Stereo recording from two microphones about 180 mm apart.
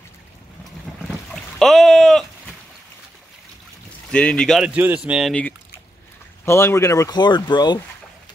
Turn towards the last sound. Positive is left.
turn(degrees=25)  # may be behind; listen again after turning